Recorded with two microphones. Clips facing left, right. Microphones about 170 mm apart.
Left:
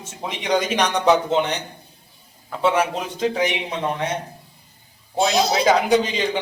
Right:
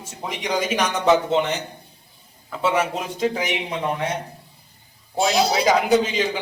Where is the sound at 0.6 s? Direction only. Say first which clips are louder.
Left 1 dB; 5° right (ahead or behind).